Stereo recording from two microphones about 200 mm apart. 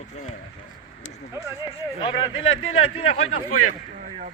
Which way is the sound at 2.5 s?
90° left.